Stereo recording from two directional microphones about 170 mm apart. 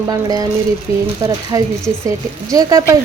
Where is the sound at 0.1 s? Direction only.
20° right (ahead or behind).